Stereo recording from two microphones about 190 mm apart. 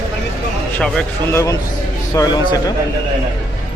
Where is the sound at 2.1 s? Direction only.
20° left (ahead or behind).